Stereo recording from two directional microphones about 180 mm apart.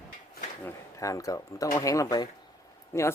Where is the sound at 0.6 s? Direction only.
15° left (ahead or behind).